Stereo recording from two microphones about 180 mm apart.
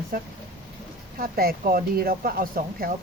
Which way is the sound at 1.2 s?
55° right (ahead or behind).